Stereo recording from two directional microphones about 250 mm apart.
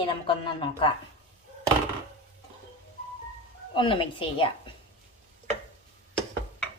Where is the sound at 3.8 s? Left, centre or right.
Centre.